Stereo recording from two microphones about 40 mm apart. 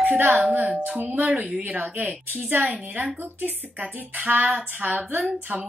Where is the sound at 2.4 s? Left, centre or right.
Right.